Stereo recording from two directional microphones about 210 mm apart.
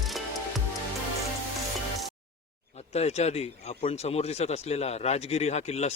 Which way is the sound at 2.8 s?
30° left (ahead or behind).